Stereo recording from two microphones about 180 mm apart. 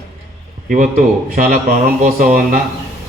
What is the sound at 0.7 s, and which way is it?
Speech, 45° right (ahead or behind).